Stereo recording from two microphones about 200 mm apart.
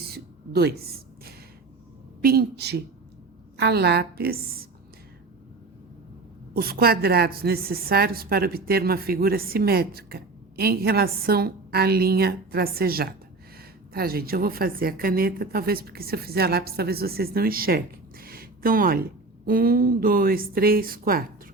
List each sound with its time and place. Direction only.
0.0 s a sound: 55° right (ahead or behind)
2.2 s a woman's voice: 50° right (ahead or behind)
6.5 s a woman's voice: 50° right (ahead or behind)